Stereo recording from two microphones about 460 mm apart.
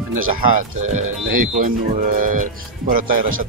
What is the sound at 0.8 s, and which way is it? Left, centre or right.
Speech, centre.